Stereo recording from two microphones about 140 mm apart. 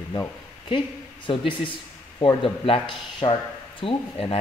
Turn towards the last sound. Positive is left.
turn(degrees=45)  # may be behind; listen again after turning